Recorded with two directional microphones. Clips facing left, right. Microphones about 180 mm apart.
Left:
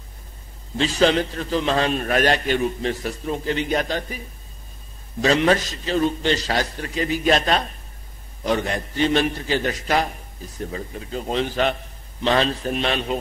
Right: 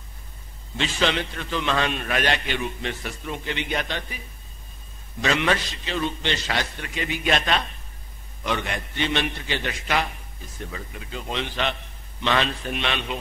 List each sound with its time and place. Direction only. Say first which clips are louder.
0.7 s a man's voice: left 6 dB; 40° left (ahead or behind)
5.2 s a man's voice: left 5 dB; 35° left (ahead or behind)